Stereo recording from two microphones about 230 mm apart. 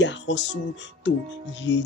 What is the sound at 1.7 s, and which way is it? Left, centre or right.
Speech, left.